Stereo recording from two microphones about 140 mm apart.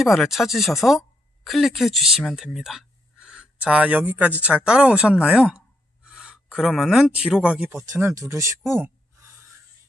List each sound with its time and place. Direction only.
0.0 s speech: centre (ahead or behind)
7.7 s speech: 20° right (ahead or behind)